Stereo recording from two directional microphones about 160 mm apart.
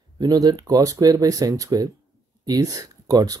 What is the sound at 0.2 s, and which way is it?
Speech, 25° right (ahead or behind).